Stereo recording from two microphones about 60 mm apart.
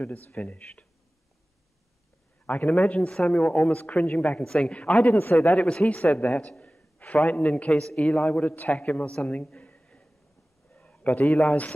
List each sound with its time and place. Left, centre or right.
0.0 s a man's voice: left
2.4 s a man's voice: left
2.9 s speech: centre
3.7 s a man's voice: left
4.4 s speech: centre
5.0 s speech: left
5.6 s a man's voice: centre
6.6 s a sound: left
7.2 s a man's voice: left
10.7 s a sound: left